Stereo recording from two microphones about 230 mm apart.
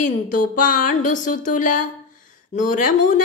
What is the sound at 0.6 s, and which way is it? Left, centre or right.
A woman's voice, left.